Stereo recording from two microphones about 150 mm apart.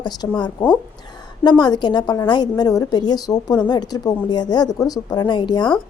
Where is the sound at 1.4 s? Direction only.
30° left (ahead or behind).